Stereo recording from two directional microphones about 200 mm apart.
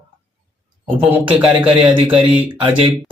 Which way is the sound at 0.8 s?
5° right (ahead or behind).